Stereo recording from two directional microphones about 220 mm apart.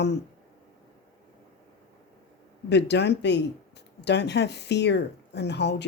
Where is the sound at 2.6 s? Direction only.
50° left (ahead or behind).